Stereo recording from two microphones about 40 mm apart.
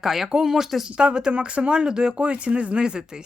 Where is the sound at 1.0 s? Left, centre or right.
Right.